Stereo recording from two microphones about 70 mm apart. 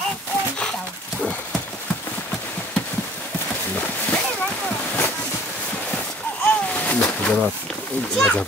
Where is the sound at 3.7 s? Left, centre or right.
Left.